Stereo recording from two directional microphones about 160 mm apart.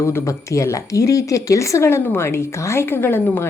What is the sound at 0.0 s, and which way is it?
A woman's voice, 15° left (ahead or behind).